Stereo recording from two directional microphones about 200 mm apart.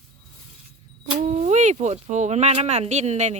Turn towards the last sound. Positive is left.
turn(degrees=-35)  # may be behind; listen again after turning